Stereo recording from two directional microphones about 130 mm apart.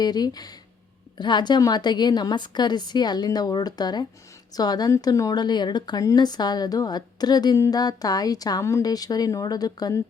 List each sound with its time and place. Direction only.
0.0 s a woman's voice: 30° left (ahead or behind)